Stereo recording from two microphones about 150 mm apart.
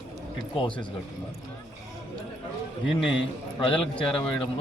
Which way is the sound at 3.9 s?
35° left (ahead or behind).